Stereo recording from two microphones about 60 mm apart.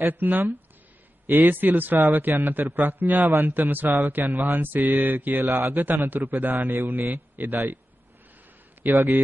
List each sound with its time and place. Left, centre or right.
0.0 s a man's voice: right
6.0 s a man's voice: right
8.8 s a man's voice: right